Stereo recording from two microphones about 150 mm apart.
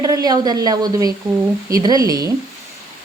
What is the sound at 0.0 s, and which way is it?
Speech, 25° right (ahead or behind).